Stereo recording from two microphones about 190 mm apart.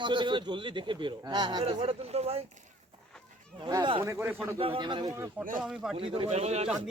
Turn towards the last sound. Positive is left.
turn(degrees=-35)  # may be behind; listen again after turning